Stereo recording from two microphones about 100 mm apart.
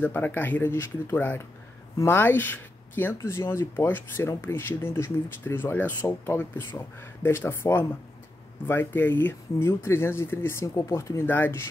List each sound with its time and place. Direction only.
0.0 s speech: 20° left (ahead or behind)